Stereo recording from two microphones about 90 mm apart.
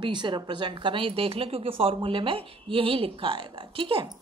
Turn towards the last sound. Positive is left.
turn(degrees=-80)